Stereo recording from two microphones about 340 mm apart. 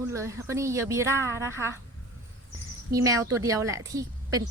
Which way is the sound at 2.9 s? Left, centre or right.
Centre.